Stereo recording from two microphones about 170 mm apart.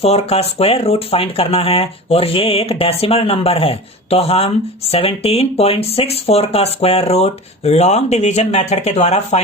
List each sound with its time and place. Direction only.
0.0 s speech: 35° left (ahead or behind)